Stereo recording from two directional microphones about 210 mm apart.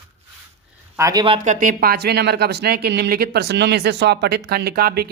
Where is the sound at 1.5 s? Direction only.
40° right (ahead or behind).